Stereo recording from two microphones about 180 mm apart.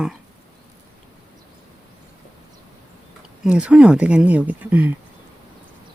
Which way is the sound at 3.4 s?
5° right (ahead or behind).